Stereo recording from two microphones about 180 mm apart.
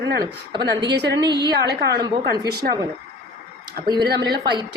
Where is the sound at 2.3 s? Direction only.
60° right (ahead or behind).